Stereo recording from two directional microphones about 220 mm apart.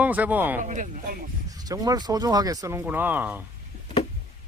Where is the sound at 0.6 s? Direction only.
35° right (ahead or behind).